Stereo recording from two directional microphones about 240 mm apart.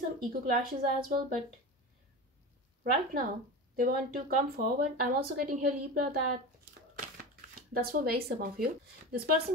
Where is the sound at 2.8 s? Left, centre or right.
Right.